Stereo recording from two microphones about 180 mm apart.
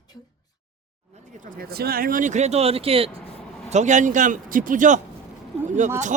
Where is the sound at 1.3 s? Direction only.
50° right (ahead or behind).